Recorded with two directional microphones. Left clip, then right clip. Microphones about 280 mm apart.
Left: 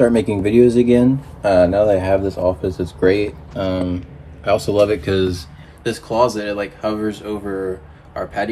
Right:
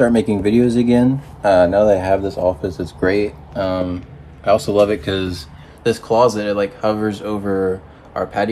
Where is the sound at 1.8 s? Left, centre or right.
Right.